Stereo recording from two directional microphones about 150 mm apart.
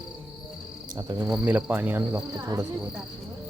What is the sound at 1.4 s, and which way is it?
Speech, 10° right (ahead or behind).